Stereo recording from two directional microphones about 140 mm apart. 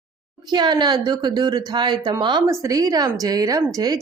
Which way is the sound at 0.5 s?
30° right (ahead or behind).